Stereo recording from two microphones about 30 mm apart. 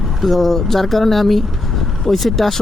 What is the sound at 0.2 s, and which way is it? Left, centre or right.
Speech, centre.